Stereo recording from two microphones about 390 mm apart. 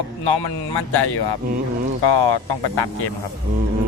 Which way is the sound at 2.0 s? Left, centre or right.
Left.